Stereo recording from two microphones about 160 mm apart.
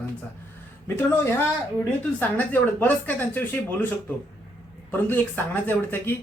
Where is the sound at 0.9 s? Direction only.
15° left (ahead or behind).